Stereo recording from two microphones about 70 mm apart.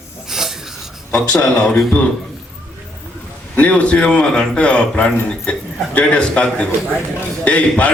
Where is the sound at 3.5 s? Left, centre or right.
Centre.